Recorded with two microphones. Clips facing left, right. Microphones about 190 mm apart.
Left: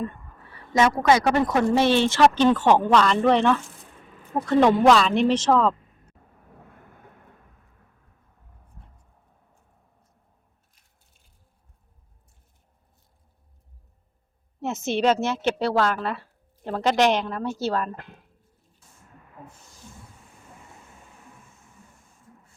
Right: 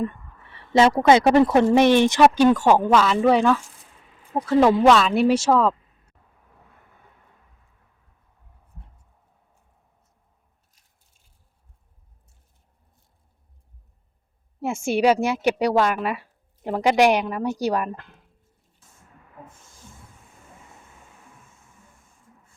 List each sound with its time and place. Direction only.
0.0 s a woman's voice: 25° right (ahead or behind); by 6.1 s 5° right (ahead or behind)
6.9 s vehicle: 50° left (ahead or behind)
14.6 s a woman's voice: 10° right (ahead or behind)